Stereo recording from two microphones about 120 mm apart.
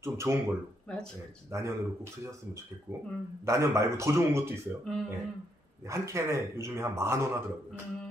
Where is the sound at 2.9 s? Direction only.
25° right (ahead or behind).